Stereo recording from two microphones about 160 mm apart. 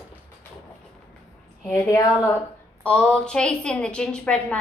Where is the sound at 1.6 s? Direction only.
15° left (ahead or behind).